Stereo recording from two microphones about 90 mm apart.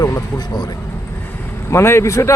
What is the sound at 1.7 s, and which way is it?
Speech, 30° left (ahead or behind).